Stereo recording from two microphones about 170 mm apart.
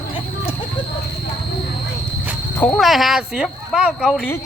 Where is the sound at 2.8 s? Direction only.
Centre (ahead or behind).